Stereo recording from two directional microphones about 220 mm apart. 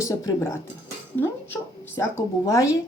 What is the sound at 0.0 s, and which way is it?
Speech, 15° left (ahead or behind).